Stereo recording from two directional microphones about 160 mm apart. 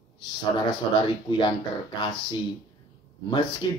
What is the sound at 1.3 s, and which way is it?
Speech, 30° left (ahead or behind).